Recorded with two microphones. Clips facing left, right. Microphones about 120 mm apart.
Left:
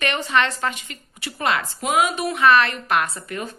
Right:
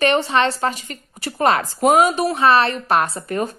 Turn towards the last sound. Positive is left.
turn(degrees=-40)  # may be behind; listen again after turning